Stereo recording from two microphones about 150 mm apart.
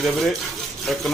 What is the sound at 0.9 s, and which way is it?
Speech, centre (ahead or behind).